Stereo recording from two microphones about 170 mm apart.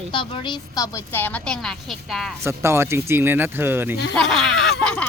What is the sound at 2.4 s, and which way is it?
Speech, 15° right (ahead or behind).